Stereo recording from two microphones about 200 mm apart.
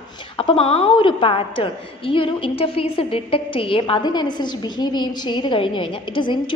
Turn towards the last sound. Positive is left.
turn(degrees=25)  # may be behind; listen again after turning